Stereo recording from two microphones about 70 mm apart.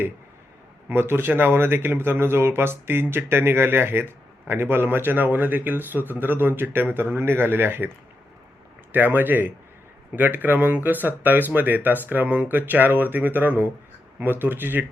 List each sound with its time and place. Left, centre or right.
0.9 s speech: right
8.9 s speech: right